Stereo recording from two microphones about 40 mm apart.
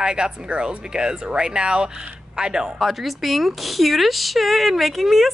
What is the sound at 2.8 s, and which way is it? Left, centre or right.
Speech, centre.